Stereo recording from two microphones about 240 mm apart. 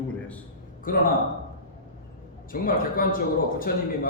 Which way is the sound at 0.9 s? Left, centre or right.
Left.